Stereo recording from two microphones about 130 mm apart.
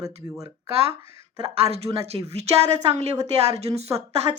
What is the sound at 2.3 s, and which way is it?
A woman's voice, 55° right (ahead or behind).